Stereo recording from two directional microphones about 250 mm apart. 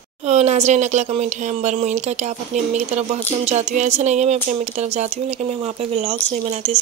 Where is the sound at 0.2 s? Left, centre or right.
Right.